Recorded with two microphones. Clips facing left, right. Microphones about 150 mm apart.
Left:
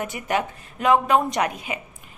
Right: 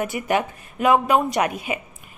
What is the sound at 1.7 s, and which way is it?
Speech, 20° right (ahead or behind).